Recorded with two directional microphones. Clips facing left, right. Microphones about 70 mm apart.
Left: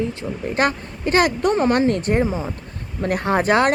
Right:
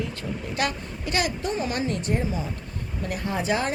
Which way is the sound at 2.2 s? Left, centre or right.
Left.